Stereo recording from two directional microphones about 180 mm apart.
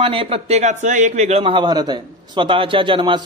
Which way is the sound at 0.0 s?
30° right (ahead or behind).